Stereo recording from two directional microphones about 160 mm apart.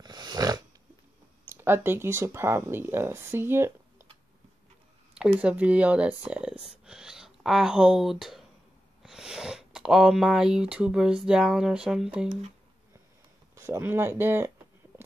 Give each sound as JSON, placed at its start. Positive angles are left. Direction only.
{"t": 0.0, "sound": "a sound", "side_deg": -25}
{"t": 1.5, "sound": "speech", "side_deg": -15}
{"t": 5.1, "sound": "speech", "side_deg": -5}
{"t": 13.6, "sound": "speech", "side_deg": -15}